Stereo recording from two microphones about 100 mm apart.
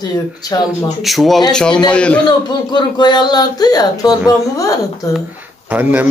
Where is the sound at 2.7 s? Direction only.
45° left (ahead or behind).